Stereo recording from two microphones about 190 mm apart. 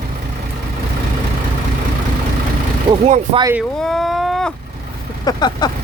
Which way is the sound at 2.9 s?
30° right (ahead or behind).